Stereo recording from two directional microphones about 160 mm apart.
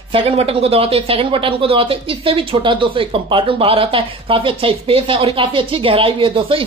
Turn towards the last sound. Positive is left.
turn(degrees=-35)  # may be behind; listen again after turning